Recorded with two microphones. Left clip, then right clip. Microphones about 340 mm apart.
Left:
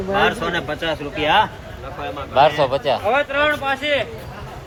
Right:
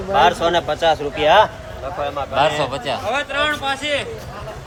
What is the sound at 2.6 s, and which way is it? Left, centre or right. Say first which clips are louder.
Speech: left 4 dB; centre.